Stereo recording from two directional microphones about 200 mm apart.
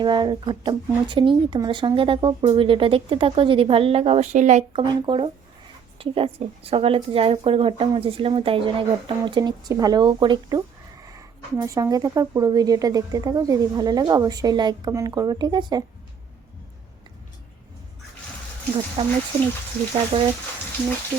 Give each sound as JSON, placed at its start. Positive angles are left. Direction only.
{"t": 0.0, "sound": "speech", "side_deg": -20}
{"t": 4.8, "sound": "speech", "side_deg": -25}
{"t": 19.0, "sound": "speech", "side_deg": -25}
{"t": 20.1, "sound": "speech", "side_deg": -25}